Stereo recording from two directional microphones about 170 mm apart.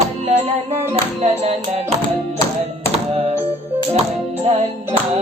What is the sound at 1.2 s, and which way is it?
Music, 40° right (ahead or behind).